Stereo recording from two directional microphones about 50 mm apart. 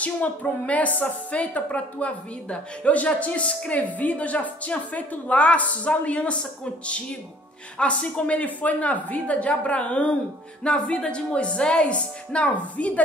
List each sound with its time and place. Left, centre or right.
0.0 s a woman's voice: left